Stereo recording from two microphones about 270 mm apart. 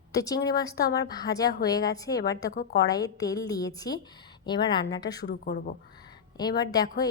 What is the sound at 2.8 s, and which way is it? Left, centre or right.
A woman's voice, centre.